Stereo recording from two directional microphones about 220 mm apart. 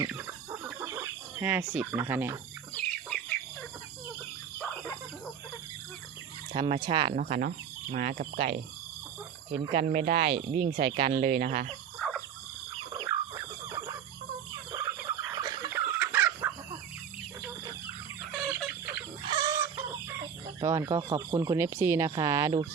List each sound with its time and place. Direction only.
0.8 s speech: 10° right (ahead or behind)
2.7 s chicken: 5° left (ahead or behind)
6.5 s speech: 25° right (ahead or behind)
7.2 s speech: 35° right (ahead or behind)
9.7 s speech: 35° right (ahead or behind)
10.3 s speech: 25° right (ahead or behind)
10.7 s speech: 35° right (ahead or behind)
11.1 s speech: 25° right (ahead or behind)
11.9 s a sound: 5° left (ahead or behind)
13.1 s a sound: 15° right (ahead or behind)
15.2 s fowl: 15° right (ahead or behind)
16.0 s chicken: 5° right (ahead or behind)
18.4 s chicken: 10° right (ahead or behind)
20.6 s speech: 15° right (ahead or behind)